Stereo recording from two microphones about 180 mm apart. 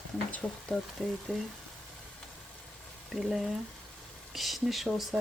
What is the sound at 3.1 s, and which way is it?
Speech, centre (ahead or behind).